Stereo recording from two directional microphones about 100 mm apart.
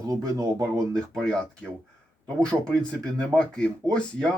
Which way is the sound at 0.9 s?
10° left (ahead or behind).